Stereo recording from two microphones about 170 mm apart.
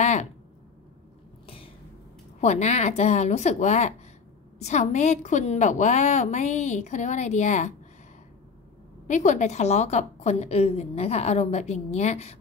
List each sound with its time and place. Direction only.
0.0 s a sound: 40° left (ahead or behind)
2.4 s a woman's voice: 40° left (ahead or behind)
9.0 s a woman's voice: 45° left (ahead or behind)